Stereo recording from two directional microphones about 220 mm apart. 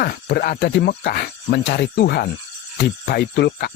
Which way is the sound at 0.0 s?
45° left (ahead or behind).